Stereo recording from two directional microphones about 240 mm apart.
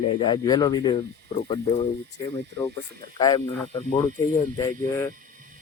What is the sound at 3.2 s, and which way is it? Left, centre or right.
Speech, centre.